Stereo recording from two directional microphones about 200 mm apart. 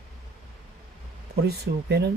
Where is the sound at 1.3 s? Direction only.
55° right (ahead or behind).